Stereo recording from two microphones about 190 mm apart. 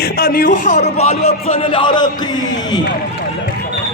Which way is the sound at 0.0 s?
50° left (ahead or behind).